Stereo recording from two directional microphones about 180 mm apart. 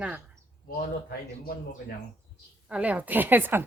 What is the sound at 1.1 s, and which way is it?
Speech, 60° left (ahead or behind).